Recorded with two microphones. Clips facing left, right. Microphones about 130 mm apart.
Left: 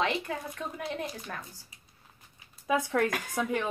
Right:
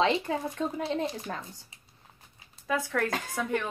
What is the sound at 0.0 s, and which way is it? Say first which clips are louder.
Speech: right 4 dB; 30° right (ahead or behind).